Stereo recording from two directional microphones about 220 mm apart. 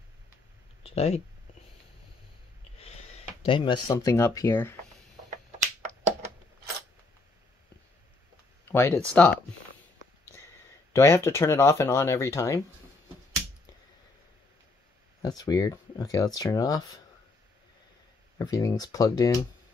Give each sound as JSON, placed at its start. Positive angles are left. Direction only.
{"t": 0.8, "sound": "speech", "side_deg": 25}
{"t": 2.8, "sound": "speech", "side_deg": 30}
{"t": 8.6, "sound": "speech", "side_deg": 10}
{"t": 10.9, "sound": "speech", "side_deg": 10}
{"t": 15.2, "sound": "speech", "side_deg": 15}
{"t": 18.4, "sound": "speech", "side_deg": 15}